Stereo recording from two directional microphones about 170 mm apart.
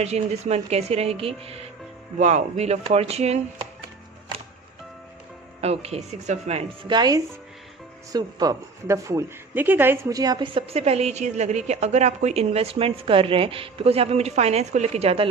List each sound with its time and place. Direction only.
0.0 s a woman's voice: 40° right (ahead or behind)
5.5 s a woman's voice: 35° right (ahead or behind)